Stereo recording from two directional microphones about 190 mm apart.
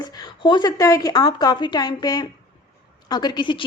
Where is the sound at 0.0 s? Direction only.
25° left (ahead or behind).